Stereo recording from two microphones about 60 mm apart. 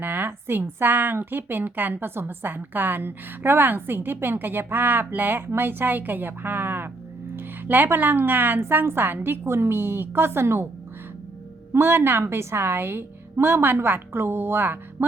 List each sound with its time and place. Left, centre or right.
0.0 s a woman's voice: right
11.7 s a woman's voice: right